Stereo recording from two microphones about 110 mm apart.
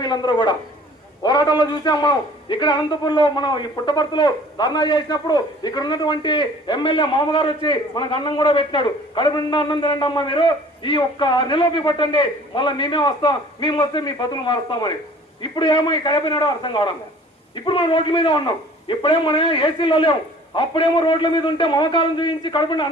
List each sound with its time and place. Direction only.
0.0 s a man's voice: 45° left (ahead or behind)